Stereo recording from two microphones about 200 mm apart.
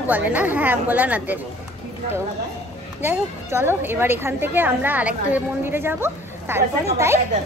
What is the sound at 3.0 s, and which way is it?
Speech, 10° right (ahead or behind).